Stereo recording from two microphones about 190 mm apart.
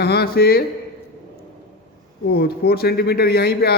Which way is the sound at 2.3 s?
55° left (ahead or behind).